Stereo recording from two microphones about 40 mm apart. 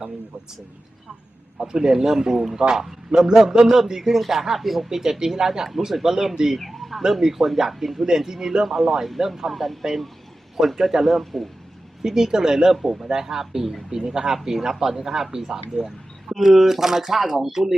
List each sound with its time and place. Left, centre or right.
1.5 s speech: centre
6.6 s bird: centre
7.1 s a man's voice: centre
12.0 s a man's voice: centre
13.1 s speech: centre